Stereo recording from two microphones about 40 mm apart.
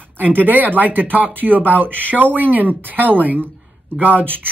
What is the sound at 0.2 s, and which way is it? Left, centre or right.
Speech, right.